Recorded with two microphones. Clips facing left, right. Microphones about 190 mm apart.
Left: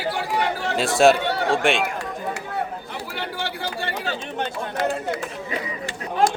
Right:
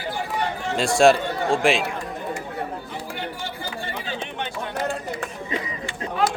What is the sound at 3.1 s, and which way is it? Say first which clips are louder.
Chatter: left 5 dB; 75° left (ahead or behind).